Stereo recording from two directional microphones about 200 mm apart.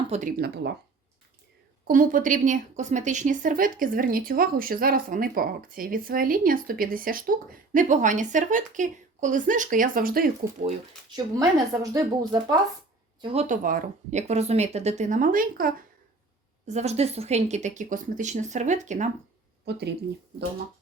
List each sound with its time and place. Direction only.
0.1 s a woman's voice: 40° right (ahead or behind)
1.9 s a woman's voice: 40° right (ahead or behind)
11.1 s speech: 20° right (ahead or behind)
13.2 s speech: 30° right (ahead or behind)
16.6 s speech: 35° right (ahead or behind)
19.7 s speech: 55° right (ahead or behind)